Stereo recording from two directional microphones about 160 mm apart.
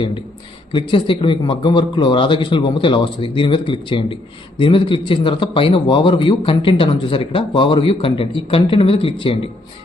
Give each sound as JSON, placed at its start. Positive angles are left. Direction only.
{"t": 0.7, "sound": "speech", "side_deg": 30}